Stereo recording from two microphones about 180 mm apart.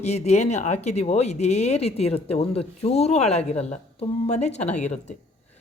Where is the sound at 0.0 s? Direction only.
35° left (ahead or behind).